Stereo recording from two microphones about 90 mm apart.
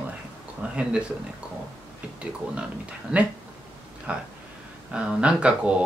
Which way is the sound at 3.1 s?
15° right (ahead or behind).